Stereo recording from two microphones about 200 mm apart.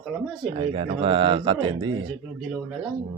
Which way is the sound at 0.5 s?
25° right (ahead or behind).